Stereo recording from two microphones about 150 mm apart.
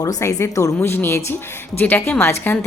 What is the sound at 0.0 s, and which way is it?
A woman's voice, 20° left (ahead or behind).